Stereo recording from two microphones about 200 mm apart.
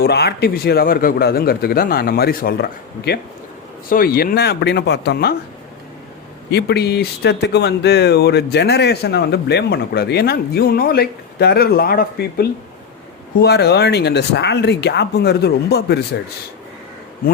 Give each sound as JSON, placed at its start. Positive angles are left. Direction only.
{"t": 0.0, "sound": "a man's voice", "side_deg": 55}
{"t": 6.5, "sound": "speech", "side_deg": 55}